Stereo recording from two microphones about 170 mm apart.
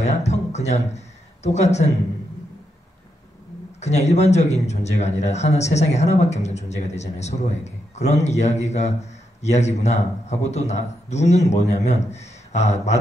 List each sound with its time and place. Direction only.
0.0 s speech: 40° left (ahead or behind)
3.8 s speech: 40° left (ahead or behind)